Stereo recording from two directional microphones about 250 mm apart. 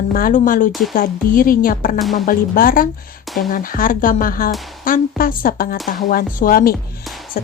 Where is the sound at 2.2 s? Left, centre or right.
Left.